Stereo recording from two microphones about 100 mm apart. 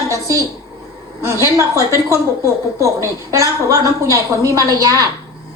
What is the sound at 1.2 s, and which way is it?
Speech, 25° right (ahead or behind).